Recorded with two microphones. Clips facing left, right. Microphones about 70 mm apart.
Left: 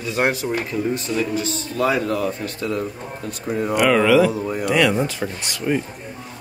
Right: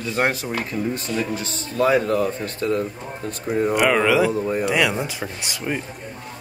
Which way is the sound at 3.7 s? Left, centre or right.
Centre.